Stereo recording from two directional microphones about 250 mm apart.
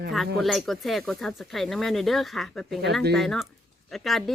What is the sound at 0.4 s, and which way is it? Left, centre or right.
Speech, centre.